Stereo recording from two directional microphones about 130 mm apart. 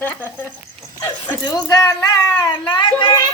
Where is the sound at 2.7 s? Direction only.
35° left (ahead or behind).